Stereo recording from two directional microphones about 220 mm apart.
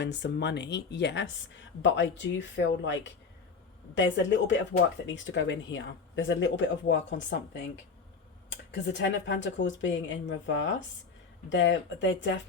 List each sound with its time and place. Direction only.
0.0 s speech: 50° left (ahead or behind)